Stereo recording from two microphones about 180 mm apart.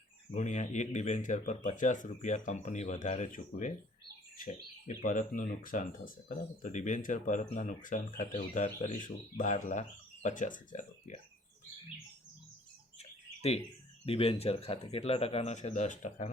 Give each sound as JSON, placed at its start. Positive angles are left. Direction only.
{"t": 0.3, "sound": "speech", "side_deg": 40}
{"t": 13.0, "sound": "bird", "side_deg": 35}
{"t": 14.0, "sound": "speech", "side_deg": 35}